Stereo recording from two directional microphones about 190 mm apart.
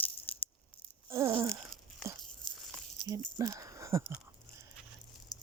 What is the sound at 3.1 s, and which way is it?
Speech, 15° right (ahead or behind).